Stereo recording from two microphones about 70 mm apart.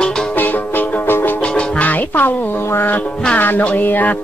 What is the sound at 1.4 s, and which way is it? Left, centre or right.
Music, centre.